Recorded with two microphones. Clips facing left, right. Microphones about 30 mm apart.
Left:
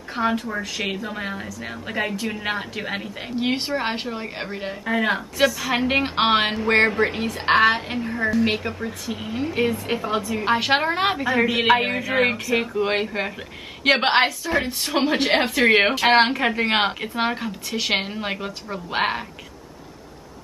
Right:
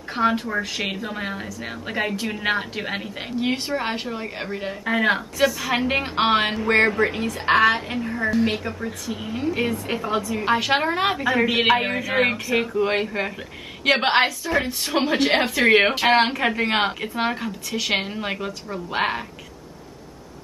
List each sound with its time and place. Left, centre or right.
0.1 s a woman's voice: centre
3.3 s a woman's voice: centre
4.8 s a woman's voice: centre
5.5 s a woman's voice: centre
6.6 s a woman's voice: left; by 11.2 s centre
11.4 s a woman's voice: centre
11.7 s a woman's voice: centre